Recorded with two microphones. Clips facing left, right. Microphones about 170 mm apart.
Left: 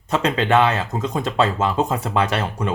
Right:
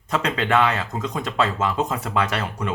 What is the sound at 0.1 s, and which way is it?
Speech, 25° left (ahead or behind).